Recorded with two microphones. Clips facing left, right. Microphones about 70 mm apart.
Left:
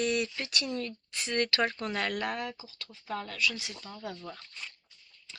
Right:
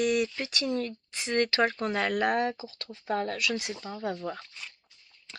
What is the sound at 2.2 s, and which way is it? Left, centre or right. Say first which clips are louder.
Speech: right 8 dB; right.